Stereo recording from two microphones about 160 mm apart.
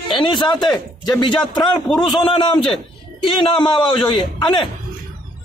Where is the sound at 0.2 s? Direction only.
30° left (ahead or behind).